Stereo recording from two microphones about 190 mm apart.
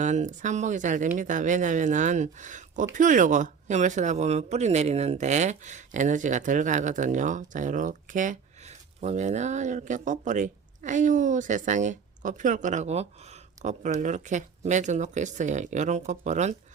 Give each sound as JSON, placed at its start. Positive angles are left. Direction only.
{"t": 0.0, "sound": "speech", "side_deg": -40}